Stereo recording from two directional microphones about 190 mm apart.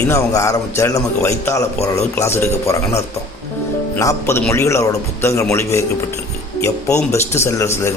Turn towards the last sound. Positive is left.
turn(degrees=15)  # may be behind; listen again after turning